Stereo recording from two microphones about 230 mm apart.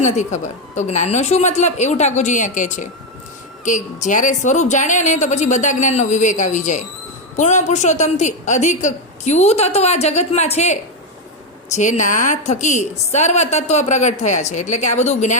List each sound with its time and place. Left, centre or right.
0.0 s a woman's voice: left